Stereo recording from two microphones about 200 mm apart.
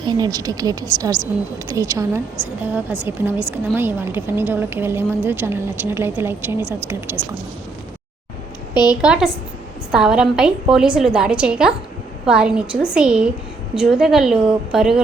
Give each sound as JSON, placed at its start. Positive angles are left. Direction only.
{"t": 0.1, "sound": "a woman's voice", "side_deg": -20}
{"t": 8.7, "sound": "a woman's voice", "side_deg": 20}
{"t": 9.0, "sound": "a woman's voice", "side_deg": -5}